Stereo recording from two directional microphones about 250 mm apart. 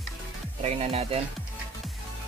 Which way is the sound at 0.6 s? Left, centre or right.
Right.